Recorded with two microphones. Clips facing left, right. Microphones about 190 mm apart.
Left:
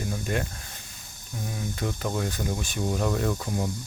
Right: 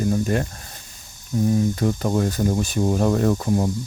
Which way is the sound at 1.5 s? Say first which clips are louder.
Right 11 dB; 40° right (ahead or behind).